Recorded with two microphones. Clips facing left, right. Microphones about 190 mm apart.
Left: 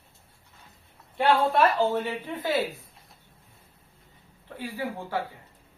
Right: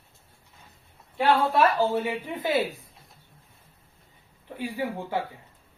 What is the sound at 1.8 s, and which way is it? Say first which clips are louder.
Speech: right 1 dB; 10° right (ahead or behind).